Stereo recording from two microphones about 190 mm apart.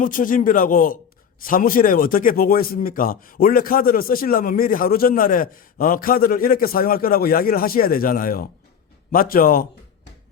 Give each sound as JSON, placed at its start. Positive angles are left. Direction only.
{"t": 0.0, "sound": "a man's voice", "side_deg": 45}